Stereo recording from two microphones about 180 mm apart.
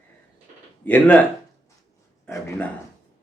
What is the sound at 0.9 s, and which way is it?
Speech, 10° left (ahead or behind).